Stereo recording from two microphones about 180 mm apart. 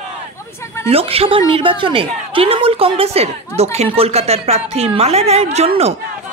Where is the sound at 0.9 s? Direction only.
30° right (ahead or behind).